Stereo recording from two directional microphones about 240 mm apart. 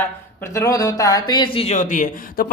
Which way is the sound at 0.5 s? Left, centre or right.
Centre.